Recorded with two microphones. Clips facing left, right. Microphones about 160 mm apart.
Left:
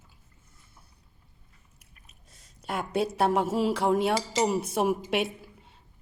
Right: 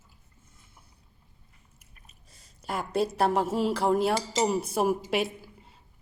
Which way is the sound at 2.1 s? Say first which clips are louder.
Even; centre (ahead or behind).